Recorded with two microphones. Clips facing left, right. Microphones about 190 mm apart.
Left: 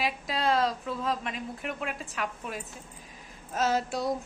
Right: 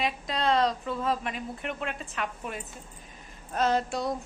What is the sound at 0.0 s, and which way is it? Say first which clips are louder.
A woman's voice: right 1 dB; 5° left (ahead or behind).